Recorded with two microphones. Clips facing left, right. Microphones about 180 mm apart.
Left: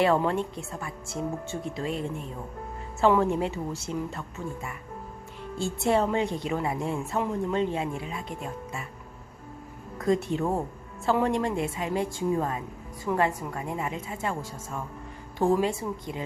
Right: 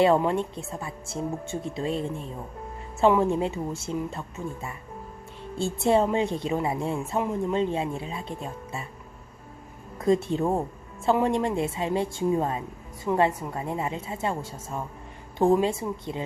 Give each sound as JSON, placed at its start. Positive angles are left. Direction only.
{"t": 0.0, "sound": "a woman's voice", "side_deg": -20}
{"t": 10.0, "sound": "a woman's voice", "side_deg": -25}